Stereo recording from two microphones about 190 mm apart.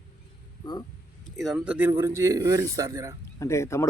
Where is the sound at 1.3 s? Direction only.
5° right (ahead or behind).